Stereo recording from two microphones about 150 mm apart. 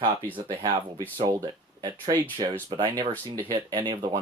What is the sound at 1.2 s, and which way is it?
Speech, 25° right (ahead or behind).